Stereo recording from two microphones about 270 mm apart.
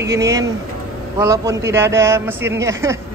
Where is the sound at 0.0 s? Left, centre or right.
Centre.